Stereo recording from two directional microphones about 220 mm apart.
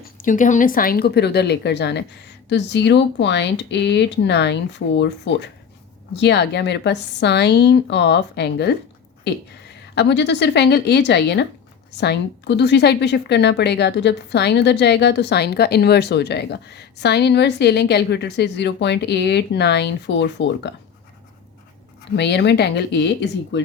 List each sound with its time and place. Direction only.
0.0 s a woman's voice: 40° left (ahead or behind); by 20.7 s 55° left (ahead or behind)
22.1 s a woman's voice: 50° left (ahead or behind)